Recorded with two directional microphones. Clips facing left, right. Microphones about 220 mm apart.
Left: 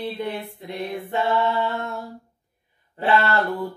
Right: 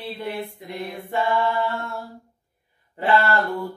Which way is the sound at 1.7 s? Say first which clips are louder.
Left 1 dB; 20° left (ahead or behind).